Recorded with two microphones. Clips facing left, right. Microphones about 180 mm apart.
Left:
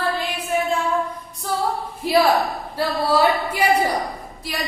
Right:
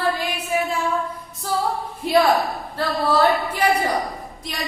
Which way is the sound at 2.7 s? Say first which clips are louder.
Even; 10° left (ahead or behind).